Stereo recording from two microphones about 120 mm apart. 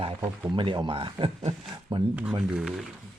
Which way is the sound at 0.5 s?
40° right (ahead or behind).